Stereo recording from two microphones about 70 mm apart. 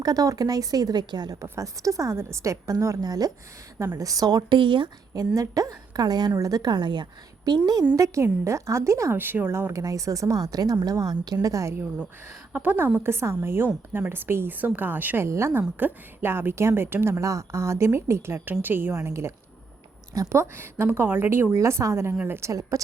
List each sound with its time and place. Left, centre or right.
0.0 s a woman's voice: right
1.4 s a woman's voice: right
5.1 s a woman's voice: right
6.4 s a woman's voice: right
7.9 s a woman's voice: right
9.1 s speech: right
9.8 s a woman's voice: right
11.4 s a woman's voice: right
12.5 s a woman's voice: right
15.3 s a woman's voice: right
18.6 s speech: right
18.9 s a woman's voice: right
20.3 s a woman's voice: right
21.5 s a woman's voice: right